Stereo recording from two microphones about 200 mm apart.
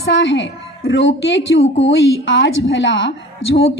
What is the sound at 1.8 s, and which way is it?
A woman's voice, 70° left (ahead or behind).